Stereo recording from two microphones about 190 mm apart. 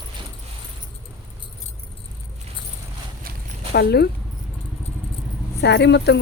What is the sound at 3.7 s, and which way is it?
Speech, 60° left (ahead or behind).